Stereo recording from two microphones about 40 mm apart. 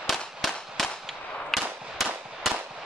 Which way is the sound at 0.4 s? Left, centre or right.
Centre.